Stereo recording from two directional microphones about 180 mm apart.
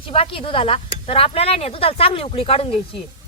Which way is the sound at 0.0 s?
30° left (ahead or behind).